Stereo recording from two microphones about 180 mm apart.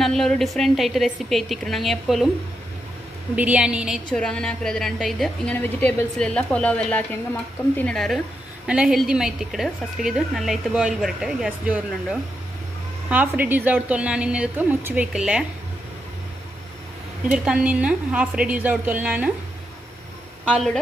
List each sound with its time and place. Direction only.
0.0 s a woman's voice: centre (ahead or behind)
3.3 s a woman's voice: 5° right (ahead or behind)
17.3 s a woman's voice: 5° right (ahead or behind)
20.4 s a woman's voice: 5° left (ahead or behind)